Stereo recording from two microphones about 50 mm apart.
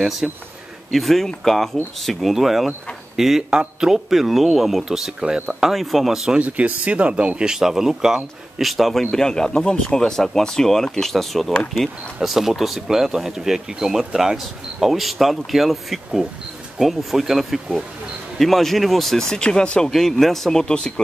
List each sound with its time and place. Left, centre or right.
0.2 s speech: centre
0.9 s speech: centre
6.4 s speech: right; by 9.0 s centre
9.1 s speech: centre
19.9 s speech: centre
20.6 s speech: centre